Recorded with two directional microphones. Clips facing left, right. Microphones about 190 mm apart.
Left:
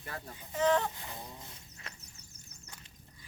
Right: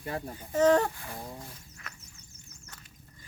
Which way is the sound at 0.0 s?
25° right (ahead or behind).